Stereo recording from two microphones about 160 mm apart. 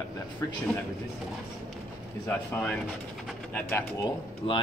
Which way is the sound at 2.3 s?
10° left (ahead or behind).